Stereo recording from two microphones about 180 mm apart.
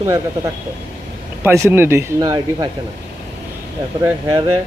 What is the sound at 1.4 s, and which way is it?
Speech, 15° right (ahead or behind).